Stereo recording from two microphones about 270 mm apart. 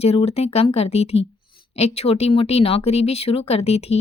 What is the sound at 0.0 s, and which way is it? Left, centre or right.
Speech, left.